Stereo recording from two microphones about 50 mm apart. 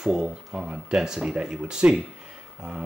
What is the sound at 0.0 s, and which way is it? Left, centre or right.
Speech, centre.